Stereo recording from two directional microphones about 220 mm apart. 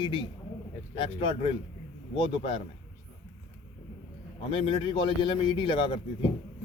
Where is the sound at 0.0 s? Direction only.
20° left (ahead or behind).